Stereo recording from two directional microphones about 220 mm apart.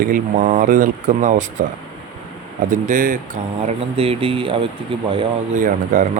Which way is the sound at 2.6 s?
35° right (ahead or behind).